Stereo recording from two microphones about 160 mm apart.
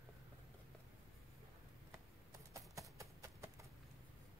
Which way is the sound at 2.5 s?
20° right (ahead or behind).